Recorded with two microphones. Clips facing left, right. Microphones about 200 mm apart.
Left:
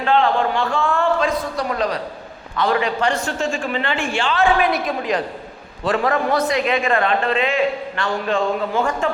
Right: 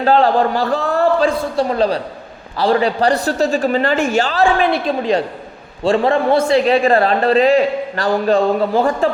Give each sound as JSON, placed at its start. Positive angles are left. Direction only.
{"t": 0.0, "sound": "a man's voice", "side_deg": -35}